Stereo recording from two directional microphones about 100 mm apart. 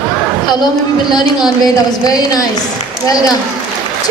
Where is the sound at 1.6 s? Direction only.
40° left (ahead or behind).